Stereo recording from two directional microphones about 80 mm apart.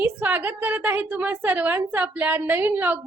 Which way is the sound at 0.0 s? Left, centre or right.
Right.